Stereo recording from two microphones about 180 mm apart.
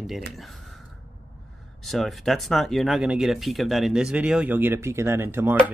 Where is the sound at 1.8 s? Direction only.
Centre (ahead or behind).